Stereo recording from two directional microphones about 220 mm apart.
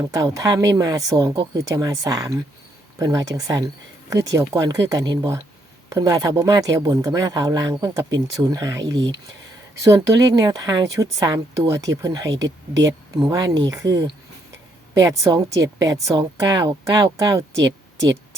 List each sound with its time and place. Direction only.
0.0 s speech: 15° right (ahead or behind)
15.0 s speech: 15° right (ahead or behind)